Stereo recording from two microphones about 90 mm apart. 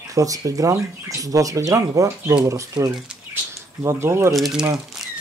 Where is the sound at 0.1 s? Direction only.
40° right (ahead or behind).